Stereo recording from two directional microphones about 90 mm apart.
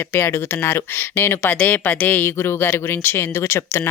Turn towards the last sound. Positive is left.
turn(degrees=30)  # may be behind; listen again after turning